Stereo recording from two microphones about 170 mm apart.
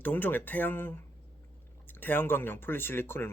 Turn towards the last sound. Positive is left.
turn(degrees=15)  # may be behind; listen again after turning